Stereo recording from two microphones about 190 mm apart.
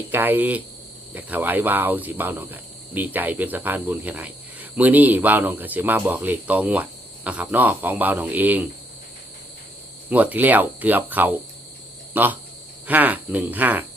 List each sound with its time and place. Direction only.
0.1 s cricket: 10° right (ahead or behind)
10.1 s cricket: 10° right (ahead or behind)
12.1 s speech: 10° right (ahead or behind)
12.9 s cricket: 10° right (ahead or behind)